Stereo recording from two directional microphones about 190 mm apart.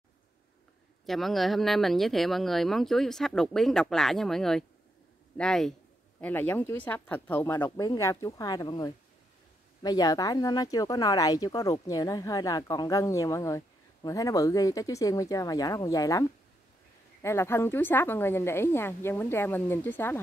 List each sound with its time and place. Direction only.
1.0 s a woman's voice: centre (ahead or behind)